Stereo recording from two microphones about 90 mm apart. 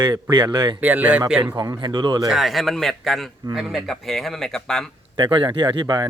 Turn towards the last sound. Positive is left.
turn(degrees=-55)  # may be behind; listen again after turning